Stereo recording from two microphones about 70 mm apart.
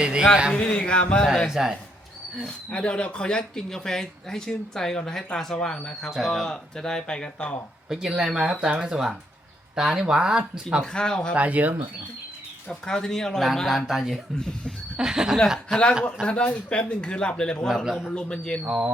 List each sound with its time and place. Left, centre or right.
0.0 s a man's voice: centre
0.5 s speech: centre
1.5 s speech: centre
2.6 s speech: centre
7.9 s speech: centre
10.9 s speech: centre
11.3 s speech: right
12.8 s speech: centre
14.3 s speech: centre
14.9 s speech: centre
15.7 s speech: centre
17.8 s speech: centre
18.1 s speech: centre
18.6 s speech: centre